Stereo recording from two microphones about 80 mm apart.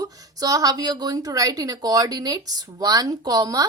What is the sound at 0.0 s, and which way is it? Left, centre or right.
A woman's voice, right.